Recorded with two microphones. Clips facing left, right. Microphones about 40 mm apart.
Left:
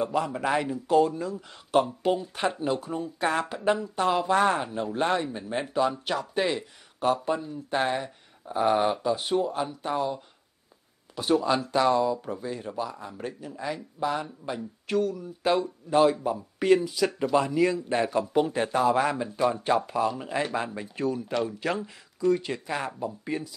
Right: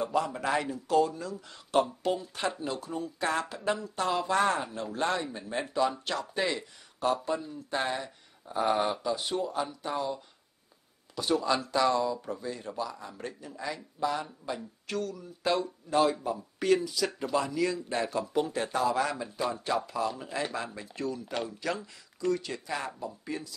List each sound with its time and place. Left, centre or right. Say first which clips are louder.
0.0 s speech: left 2 dB; centre
1.5 s speech: left 3 dB; centre
1.9 s speech: left 4 dB; centre
11.1 s speech: left 4 dB; centre
13.1 s speech: left 4 dB; centre; by 21.9 s left
22.2 s speech: left 5 dB; centre